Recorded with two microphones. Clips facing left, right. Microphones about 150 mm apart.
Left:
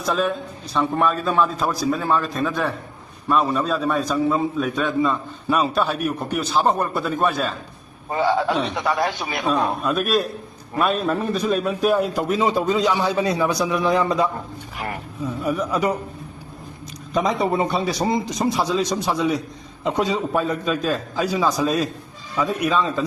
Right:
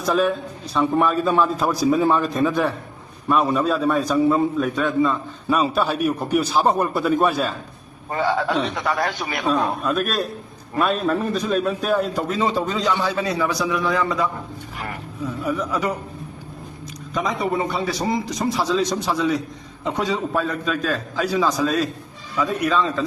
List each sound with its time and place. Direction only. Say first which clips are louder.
0.0 s a man's voice: right 2 dB; centre (ahead or behind)
8.1 s a man's voice: left 1 dB; 10° left (ahead or behind)
9.5 s a man's voice: even; centre (ahead or behind); by 14.3 s 20° left (ahead or behind)
15.5 s a man's voice: left 4 dB; 15° left (ahead or behind)
17.2 s a man's voice: left 3 dB; 25° left (ahead or behind)